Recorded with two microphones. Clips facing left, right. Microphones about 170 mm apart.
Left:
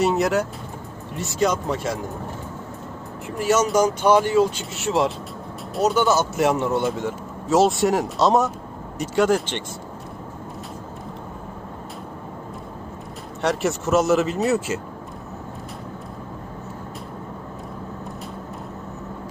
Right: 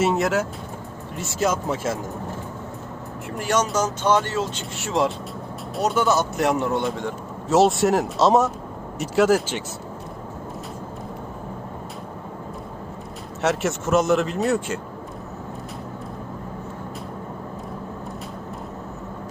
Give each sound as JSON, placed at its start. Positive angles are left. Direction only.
{"t": 0.0, "sound": "speech", "side_deg": 0}
{"t": 3.3, "sound": "speech", "side_deg": 5}
{"t": 4.8, "sound": "speech", "side_deg": 0}
{"t": 13.4, "sound": "speech", "side_deg": 0}